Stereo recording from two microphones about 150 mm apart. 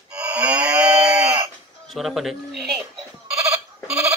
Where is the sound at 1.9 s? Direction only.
Centre (ahead or behind).